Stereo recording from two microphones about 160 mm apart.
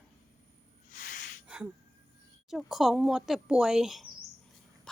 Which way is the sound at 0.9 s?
60° left (ahead or behind).